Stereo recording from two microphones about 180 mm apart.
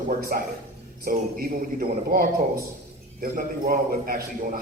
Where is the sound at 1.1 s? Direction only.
55° right (ahead or behind).